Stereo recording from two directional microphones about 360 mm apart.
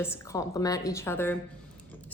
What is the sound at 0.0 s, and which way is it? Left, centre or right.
A woman's voice, centre.